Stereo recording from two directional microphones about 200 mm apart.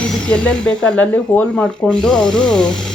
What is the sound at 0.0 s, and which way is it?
Speech, 5° left (ahead or behind).